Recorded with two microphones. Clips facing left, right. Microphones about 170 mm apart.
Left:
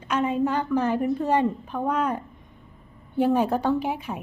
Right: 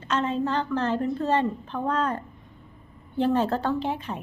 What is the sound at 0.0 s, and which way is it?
Speech, 10° left (ahead or behind).